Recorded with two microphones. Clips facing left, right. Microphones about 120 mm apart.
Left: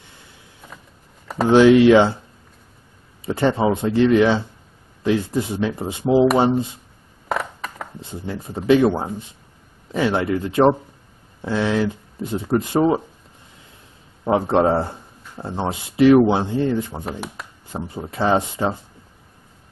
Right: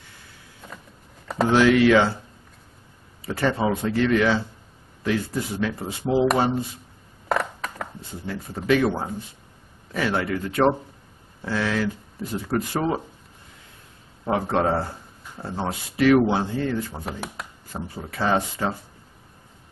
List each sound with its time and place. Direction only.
0.6 s a sound: 5° left (ahead or behind)
1.2 s computer keyboard: centre (ahead or behind)
1.5 s speech: 20° left (ahead or behind)
3.3 s speech: 20° left (ahead or behind)
7.2 s a sound: centre (ahead or behind)
8.0 s speech: 20° left (ahead or behind)
14.2 s speech: 20° left (ahead or behind)
17.0 s speech: centre (ahead or behind)
17.6 s speech: 20° left (ahead or behind)